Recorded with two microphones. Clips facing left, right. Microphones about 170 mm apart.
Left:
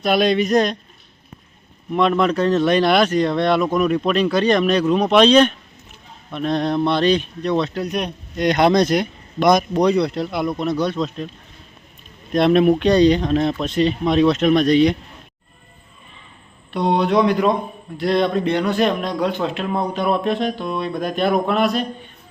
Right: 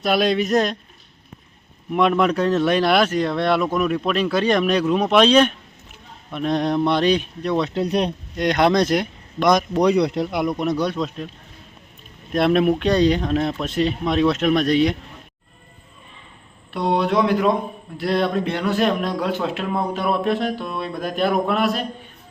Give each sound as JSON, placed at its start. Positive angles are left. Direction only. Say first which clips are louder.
{"t": 0.0, "sound": "speech", "louder": "left 2 dB", "side_deg": -5}
{"t": 1.9, "sound": "speech", "louder": "left 1 dB", "side_deg": -10}
{"t": 7.7, "sound": "speech", "louder": "right 3 dB", "side_deg": -30}
{"t": 8.4, "sound": "speech", "louder": "left 2 dB", "side_deg": 0}
{"t": 9.8, "sound": "speech", "louder": "even", "side_deg": -15}
{"t": 12.3, "sound": "speech", "louder": "left 3 dB", "side_deg": -5}
{"t": 16.7, "sound": "speech", "louder": "left 2 dB", "side_deg": 0}